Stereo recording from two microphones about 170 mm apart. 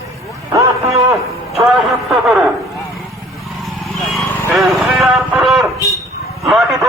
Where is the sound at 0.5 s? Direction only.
20° right (ahead or behind).